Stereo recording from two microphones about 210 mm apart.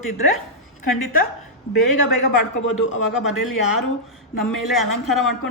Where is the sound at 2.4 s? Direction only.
70° left (ahead or behind).